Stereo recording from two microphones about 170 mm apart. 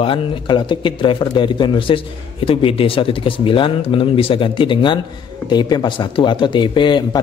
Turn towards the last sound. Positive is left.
turn(degrees=25)  # may be behind; listen again after turning